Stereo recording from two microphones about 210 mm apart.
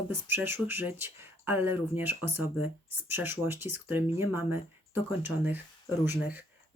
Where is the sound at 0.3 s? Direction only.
10° right (ahead or behind).